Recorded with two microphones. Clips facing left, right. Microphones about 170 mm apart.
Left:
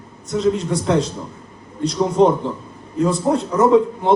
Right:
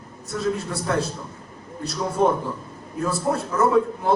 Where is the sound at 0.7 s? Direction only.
20° left (ahead or behind).